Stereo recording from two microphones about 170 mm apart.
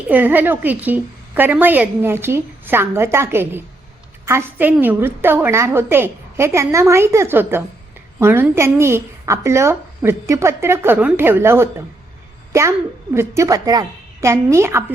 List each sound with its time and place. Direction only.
0.1 s a woman's voice: 10° right (ahead or behind)
13.1 s a woman's voice: 15° right (ahead or behind)